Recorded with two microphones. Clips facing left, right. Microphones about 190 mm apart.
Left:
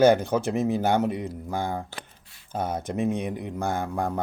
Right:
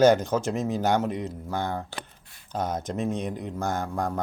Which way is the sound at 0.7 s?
55° left (ahead or behind).